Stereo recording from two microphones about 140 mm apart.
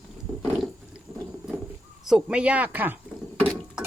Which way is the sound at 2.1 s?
5° right (ahead or behind).